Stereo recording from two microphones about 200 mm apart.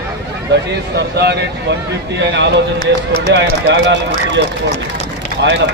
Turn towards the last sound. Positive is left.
turn(degrees=-60)  # may be behind; listen again after turning